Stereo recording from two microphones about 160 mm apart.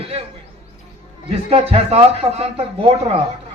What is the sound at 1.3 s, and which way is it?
A man's voice, 35° right (ahead or behind).